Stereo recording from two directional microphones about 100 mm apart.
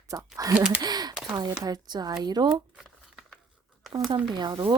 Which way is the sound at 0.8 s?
40° right (ahead or behind).